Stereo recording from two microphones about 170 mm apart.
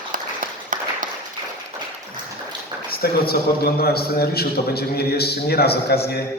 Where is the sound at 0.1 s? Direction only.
55° right (ahead or behind).